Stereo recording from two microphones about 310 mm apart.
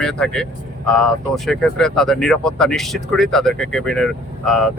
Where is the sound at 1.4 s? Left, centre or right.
Centre.